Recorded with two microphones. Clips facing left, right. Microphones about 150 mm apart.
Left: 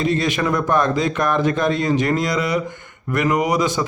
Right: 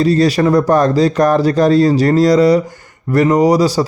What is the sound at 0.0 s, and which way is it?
Speech, 35° right (ahead or behind).